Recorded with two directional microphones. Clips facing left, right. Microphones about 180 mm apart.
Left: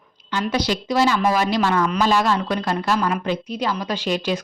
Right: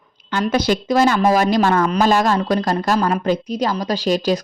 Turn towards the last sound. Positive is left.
turn(degrees=-40)  # may be behind; listen again after turning